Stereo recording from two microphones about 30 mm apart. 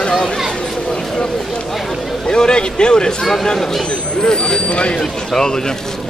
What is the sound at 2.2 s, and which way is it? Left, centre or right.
A man's voice, left.